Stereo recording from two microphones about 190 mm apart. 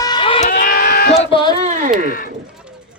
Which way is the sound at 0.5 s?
50° left (ahead or behind).